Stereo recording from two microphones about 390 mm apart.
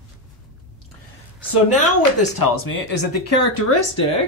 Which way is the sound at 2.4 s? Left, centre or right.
Left.